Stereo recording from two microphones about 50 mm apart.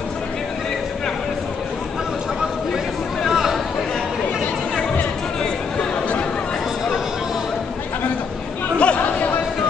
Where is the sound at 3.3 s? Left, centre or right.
Centre.